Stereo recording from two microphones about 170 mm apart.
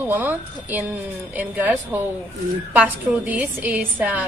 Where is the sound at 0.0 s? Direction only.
10° right (ahead or behind).